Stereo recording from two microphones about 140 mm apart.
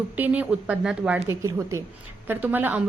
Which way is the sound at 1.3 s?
20° right (ahead or behind).